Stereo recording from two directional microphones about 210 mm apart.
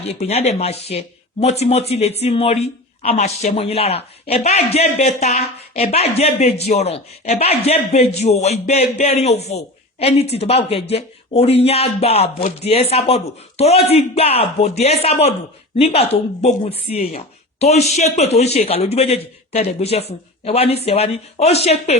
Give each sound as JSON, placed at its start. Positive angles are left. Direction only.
{"t": 0.0, "sound": "a man's voice", "side_deg": 30}